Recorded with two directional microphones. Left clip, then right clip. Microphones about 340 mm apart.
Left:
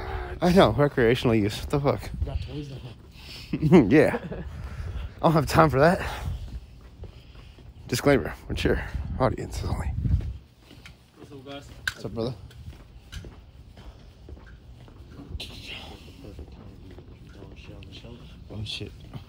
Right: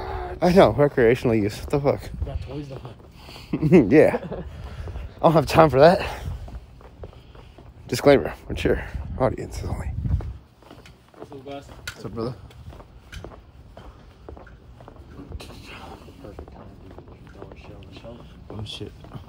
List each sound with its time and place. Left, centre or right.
0.0 s speech: centre
7.8 s speech: centre
12.0 s speech: centre
15.3 s a sound: centre
17.6 s a sound: centre
18.6 s speech: centre